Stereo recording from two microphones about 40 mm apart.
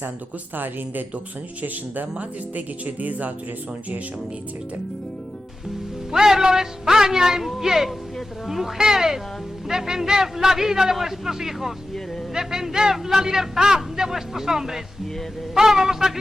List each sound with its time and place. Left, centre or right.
0.5 s a man's voice: right
1.6 s speech: right
6.1 s a man's voice: centre